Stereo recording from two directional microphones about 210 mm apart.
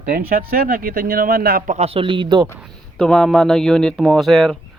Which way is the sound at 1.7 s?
30° right (ahead or behind).